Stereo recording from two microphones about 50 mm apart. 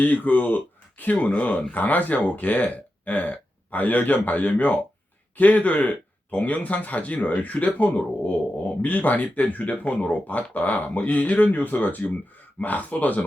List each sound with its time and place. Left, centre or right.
0.0 s speech: left